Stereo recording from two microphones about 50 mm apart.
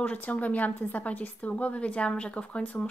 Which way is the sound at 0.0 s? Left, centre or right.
Left.